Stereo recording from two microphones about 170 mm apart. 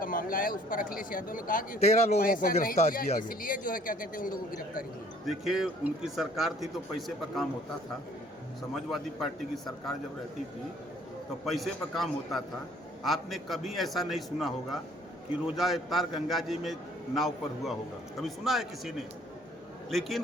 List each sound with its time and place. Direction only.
0.0 s speech: 55° left (ahead or behind)
5.2 s a man's voice: centre (ahead or behind)
8.7 s a man's voice: centre (ahead or behind)
11.4 s a man's voice: centre (ahead or behind)